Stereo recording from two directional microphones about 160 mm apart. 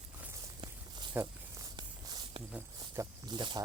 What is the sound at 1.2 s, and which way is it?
Speech, 15° right (ahead or behind).